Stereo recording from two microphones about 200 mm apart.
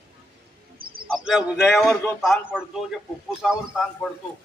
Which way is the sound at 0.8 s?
45° right (ahead or behind).